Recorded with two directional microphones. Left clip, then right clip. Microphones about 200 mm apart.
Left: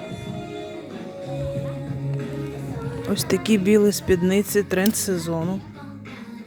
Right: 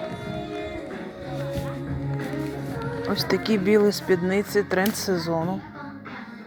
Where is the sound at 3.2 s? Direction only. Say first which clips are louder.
Left 3 dB; 25° left (ahead or behind).